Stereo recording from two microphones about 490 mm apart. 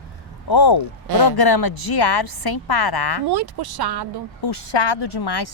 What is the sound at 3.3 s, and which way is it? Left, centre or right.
Speech, right.